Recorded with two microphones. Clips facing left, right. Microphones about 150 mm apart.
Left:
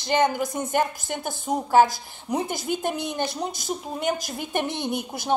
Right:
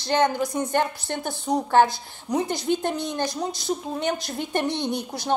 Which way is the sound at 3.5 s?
50° left (ahead or behind).